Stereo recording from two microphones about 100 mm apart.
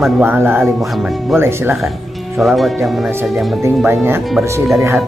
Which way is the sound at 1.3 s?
25° right (ahead or behind).